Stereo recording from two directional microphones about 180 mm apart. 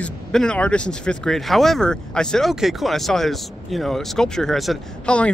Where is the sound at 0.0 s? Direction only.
5° left (ahead or behind).